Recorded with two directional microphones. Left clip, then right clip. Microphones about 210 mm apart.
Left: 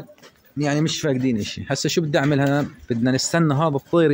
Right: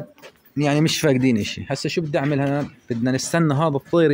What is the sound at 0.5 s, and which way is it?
Speech, 30° right (ahead or behind).